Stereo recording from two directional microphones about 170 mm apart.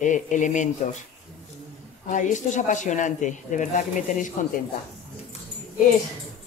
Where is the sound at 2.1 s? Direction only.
45° left (ahead or behind).